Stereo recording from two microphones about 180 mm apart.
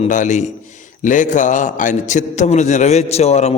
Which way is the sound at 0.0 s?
45° left (ahead or behind).